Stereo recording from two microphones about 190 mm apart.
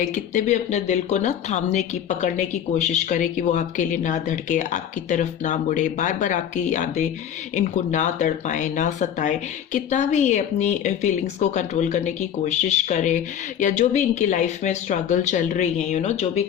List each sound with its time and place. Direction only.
0.0 s speech: 40° left (ahead or behind)